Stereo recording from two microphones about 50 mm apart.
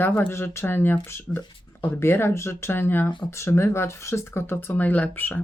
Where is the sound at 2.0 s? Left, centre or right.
Left.